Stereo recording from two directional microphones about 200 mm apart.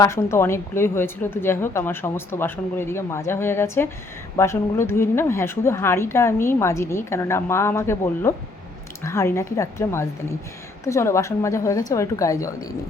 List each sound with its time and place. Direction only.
0.0 s a woman's voice: 15° left (ahead or behind)